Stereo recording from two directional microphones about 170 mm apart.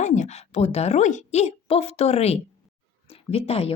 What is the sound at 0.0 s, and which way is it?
A woman's voice, 45° left (ahead or behind).